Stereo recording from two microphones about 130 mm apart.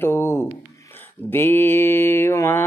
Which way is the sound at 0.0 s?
20° left (ahead or behind).